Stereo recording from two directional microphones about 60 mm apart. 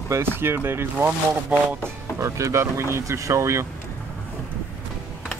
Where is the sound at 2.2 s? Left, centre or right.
Right.